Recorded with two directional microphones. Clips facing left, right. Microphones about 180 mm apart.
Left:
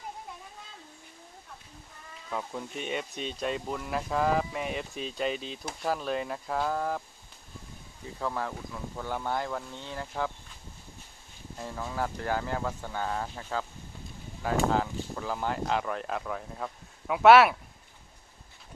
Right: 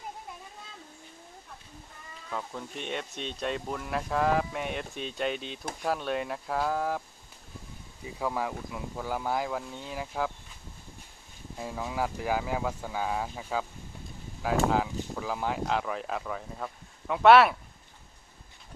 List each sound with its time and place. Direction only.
2.3 s speech: 5° left (ahead or behind)
8.0 s speech: 10° right (ahead or behind)
11.5 s speech: 10° right (ahead or behind)